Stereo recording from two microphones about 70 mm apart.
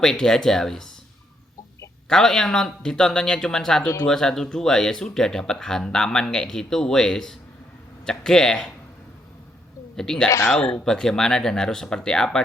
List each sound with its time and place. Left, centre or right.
0.0 s speech: centre
2.0 s speech: centre
9.9 s speech: centre
10.2 s speech: left
10.6 s speech: centre